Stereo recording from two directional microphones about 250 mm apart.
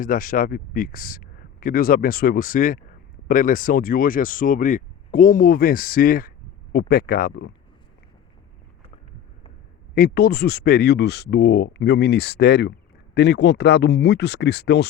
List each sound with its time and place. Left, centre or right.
0.0 s speech: left
9.9 s speech: left